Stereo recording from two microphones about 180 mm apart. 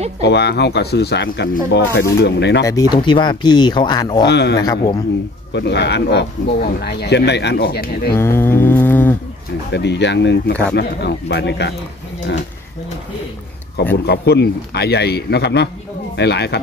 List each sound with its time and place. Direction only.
0.2 s speech: 70° left (ahead or behind)
2.6 s speech: 20° left (ahead or behind)
4.3 s speech: 70° left (ahead or behind)
4.6 s speech: 20° left (ahead or behind)
5.5 s speech: 70° left (ahead or behind)
8.1 s mantra: 15° left (ahead or behind)
9.7 s speech: 75° left (ahead or behind)
14.0 s a man's voice: 65° left (ahead or behind)